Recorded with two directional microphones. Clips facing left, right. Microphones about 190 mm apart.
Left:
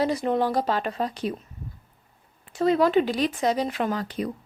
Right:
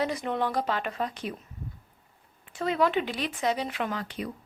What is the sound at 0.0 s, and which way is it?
A woman's voice, 35° left (ahead or behind).